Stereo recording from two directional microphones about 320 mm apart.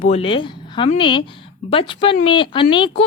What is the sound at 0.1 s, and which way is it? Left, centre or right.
A woman's voice, centre.